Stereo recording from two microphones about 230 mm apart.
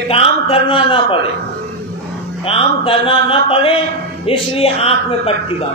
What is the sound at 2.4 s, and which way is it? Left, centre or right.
Mantra, left.